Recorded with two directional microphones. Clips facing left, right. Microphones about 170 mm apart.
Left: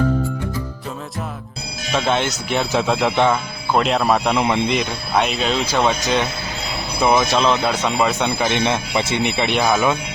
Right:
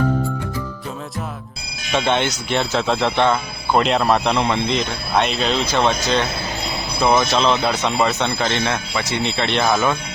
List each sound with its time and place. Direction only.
1.9 s speech: centre (ahead or behind)
4.4 s speech: 15° left (ahead or behind)
5.1 s speech: 5° left (ahead or behind)
7.4 s speech: 5° right (ahead or behind)